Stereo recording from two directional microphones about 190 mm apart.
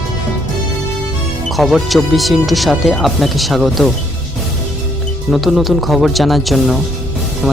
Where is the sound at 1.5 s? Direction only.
Centre (ahead or behind).